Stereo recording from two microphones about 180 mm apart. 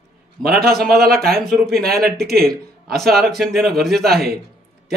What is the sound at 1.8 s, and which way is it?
A man's voice, 60° right (ahead or behind).